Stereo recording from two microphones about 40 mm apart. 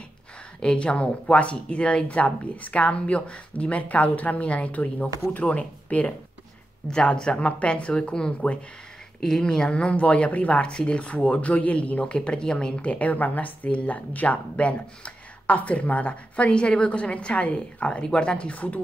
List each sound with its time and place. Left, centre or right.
0.6 s speech: left
6.9 s a woman's voice: left
9.7 s speech: left
10.7 s speech: left
13.7 s a woman's voice: left